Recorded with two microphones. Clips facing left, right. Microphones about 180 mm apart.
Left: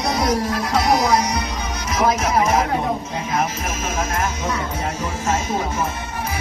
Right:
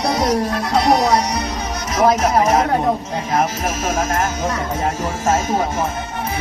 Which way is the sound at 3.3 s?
40° right (ahead or behind).